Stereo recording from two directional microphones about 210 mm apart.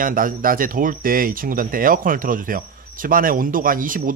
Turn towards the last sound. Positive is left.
turn(degrees=-40)  # may be behind; listen again after turning